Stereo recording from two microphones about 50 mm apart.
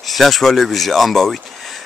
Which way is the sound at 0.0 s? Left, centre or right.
Centre.